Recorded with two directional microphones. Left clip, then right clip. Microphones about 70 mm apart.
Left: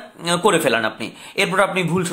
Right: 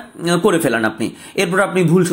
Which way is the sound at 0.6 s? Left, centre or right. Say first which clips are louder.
Right 2 dB; right.